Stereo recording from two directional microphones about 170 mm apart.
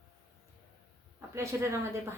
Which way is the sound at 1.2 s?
15° right (ahead or behind).